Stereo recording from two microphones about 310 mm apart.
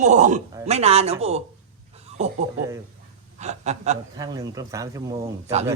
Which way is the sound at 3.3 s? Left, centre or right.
Right.